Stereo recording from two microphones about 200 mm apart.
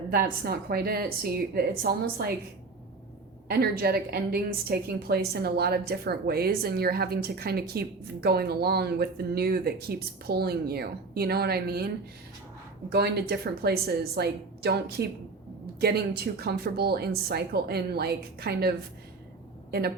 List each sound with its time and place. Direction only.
0.1 s a woman's voice: 50° right (ahead or behind)
3.5 s a woman's voice: 50° right (ahead or behind)
12.9 s a woman's voice: 55° right (ahead or behind)